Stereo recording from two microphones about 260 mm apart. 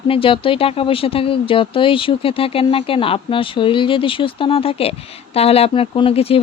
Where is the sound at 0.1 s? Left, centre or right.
Left.